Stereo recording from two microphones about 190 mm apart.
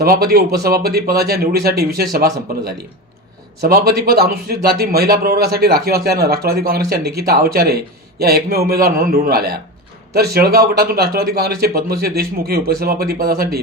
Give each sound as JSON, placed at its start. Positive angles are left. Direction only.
{"t": 0.0, "sound": "a man's voice", "side_deg": -55}
{"t": 3.6, "sound": "a man's voice", "side_deg": -55}